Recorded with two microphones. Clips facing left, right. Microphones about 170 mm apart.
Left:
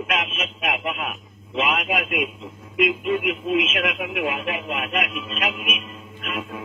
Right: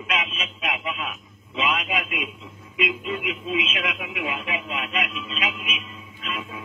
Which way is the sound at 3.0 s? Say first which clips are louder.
Left 6 dB; 55° left (ahead or behind).